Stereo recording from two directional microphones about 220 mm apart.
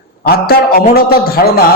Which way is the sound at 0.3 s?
45° left (ahead or behind).